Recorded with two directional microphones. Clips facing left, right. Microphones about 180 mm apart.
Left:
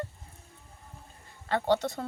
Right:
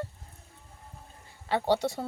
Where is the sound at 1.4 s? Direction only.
10° right (ahead or behind).